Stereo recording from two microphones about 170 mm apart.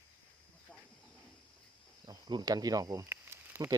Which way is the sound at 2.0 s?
25° right (ahead or behind).